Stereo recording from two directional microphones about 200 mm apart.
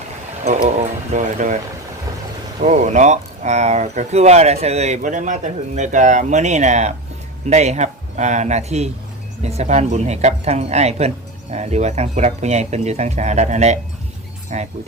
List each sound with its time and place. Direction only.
0.4 s speech: 35° right (ahead or behind)
2.6 s speech: 35° right (ahead or behind)